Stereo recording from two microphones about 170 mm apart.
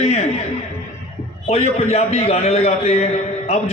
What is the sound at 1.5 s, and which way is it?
A man's voice, 40° left (ahead or behind).